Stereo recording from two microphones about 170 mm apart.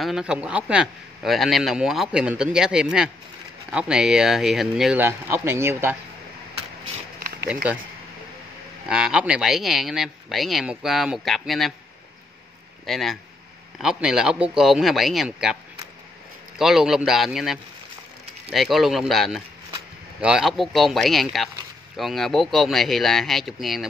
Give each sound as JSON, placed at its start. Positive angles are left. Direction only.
{"t": 0.0, "sound": "a man's voice", "side_deg": -5}
{"t": 5.0, "sound": "a man's voice", "side_deg": -15}
{"t": 7.2, "sound": "a sound", "side_deg": -60}
{"t": 8.8, "sound": "a man's voice", "side_deg": -5}
{"t": 12.8, "sound": "a man's voice", "side_deg": 0}
{"t": 16.5, "sound": "a man's voice", "side_deg": -5}